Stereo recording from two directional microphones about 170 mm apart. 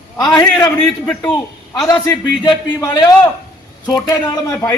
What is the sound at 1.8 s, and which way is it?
A man's voice, 20° left (ahead or behind).